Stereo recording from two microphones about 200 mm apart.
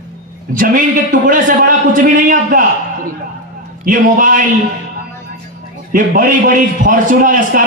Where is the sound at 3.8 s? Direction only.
40° right (ahead or behind).